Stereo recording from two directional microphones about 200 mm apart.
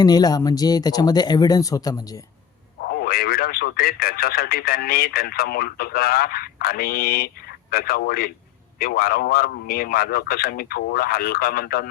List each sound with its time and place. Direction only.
0.0 s speech: 20° left (ahead or behind)
2.8 s speech: 50° left (ahead or behind)